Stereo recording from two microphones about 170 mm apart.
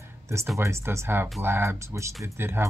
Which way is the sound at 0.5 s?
15° right (ahead or behind).